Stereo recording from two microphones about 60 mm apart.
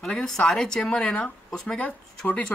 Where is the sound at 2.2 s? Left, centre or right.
Left.